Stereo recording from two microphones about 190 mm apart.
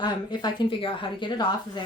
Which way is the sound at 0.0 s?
25° left (ahead or behind).